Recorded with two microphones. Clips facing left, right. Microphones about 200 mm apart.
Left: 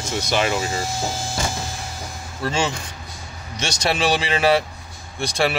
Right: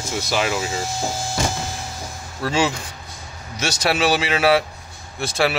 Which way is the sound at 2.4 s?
10° right (ahead or behind).